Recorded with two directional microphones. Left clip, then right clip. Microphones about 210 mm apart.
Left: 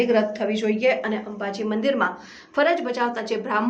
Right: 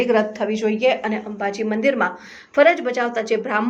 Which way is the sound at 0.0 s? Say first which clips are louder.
Right 2 dB; 20° right (ahead or behind).